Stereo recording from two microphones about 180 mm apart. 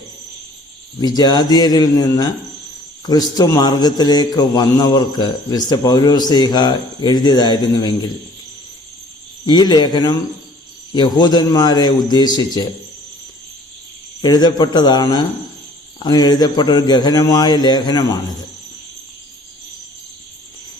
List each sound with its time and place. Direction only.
0.9 s a man's voice: 20° left (ahead or behind)
9.5 s a man's voice: 25° left (ahead or behind)
14.2 s a man's voice: 25° left (ahead or behind)